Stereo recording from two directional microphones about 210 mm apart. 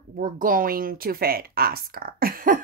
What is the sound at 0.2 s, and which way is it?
Speech, 40° right (ahead or behind).